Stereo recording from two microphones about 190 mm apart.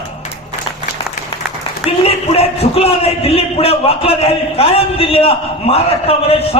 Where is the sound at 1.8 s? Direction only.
30° left (ahead or behind).